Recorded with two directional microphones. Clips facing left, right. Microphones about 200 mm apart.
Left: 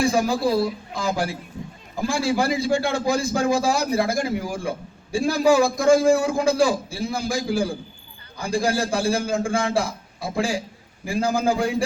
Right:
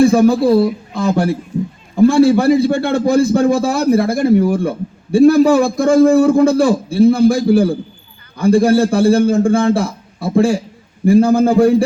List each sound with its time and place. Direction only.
0.0 s a man's voice: 60° right (ahead or behind)